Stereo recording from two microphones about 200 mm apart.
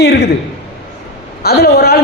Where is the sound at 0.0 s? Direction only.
55° left (ahead or behind).